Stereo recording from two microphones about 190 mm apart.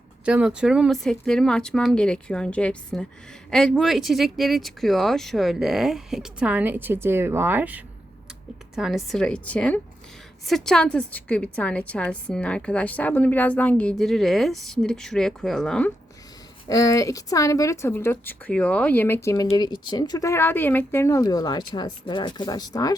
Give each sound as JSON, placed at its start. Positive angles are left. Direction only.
{"t": 0.3, "sound": "a woman's voice", "side_deg": -5}
{"t": 16.6, "sound": "speech", "side_deg": 20}